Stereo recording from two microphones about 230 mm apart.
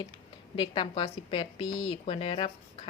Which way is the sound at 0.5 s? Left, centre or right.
Left.